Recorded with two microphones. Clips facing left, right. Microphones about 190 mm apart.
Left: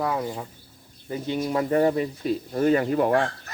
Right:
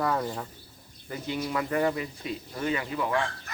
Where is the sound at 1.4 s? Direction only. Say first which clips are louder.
Left 6 dB; 35° left (ahead or behind).